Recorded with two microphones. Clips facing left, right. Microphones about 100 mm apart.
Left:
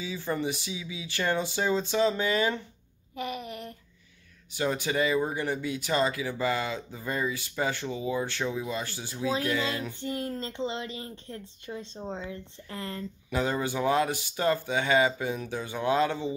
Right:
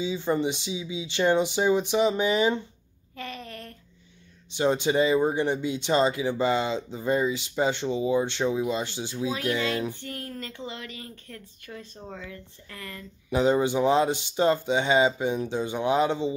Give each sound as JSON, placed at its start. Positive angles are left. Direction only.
{"t": 0.0, "sound": "speech", "side_deg": -20}
{"t": 3.2, "sound": "a sound", "side_deg": 15}
{"t": 4.5, "sound": "speech", "side_deg": -25}
{"t": 9.9, "sound": "a woman's voice", "side_deg": 20}
{"t": 13.3, "sound": "speech", "side_deg": -20}